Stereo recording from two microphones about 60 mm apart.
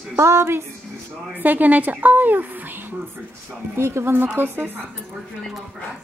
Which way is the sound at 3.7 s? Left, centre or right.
Right.